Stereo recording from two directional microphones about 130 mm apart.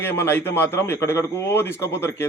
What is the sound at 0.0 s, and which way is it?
A man's voice, 15° left (ahead or behind).